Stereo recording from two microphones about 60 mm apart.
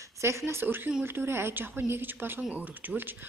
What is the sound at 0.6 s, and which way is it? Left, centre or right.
Speech, right.